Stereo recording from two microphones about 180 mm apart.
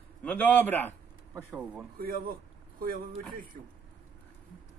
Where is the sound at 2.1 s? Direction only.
55° right (ahead or behind).